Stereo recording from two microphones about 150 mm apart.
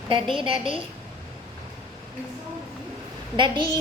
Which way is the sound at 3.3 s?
35° right (ahead or behind).